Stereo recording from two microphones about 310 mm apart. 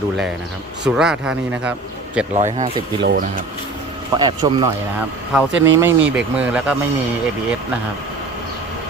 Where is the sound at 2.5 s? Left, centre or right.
Centre.